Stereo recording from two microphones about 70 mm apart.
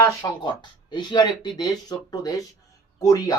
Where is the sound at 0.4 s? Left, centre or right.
Left.